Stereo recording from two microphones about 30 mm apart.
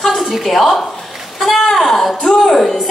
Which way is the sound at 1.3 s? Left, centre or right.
Centre.